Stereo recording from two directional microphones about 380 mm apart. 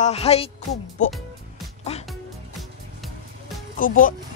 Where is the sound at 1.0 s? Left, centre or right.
Centre.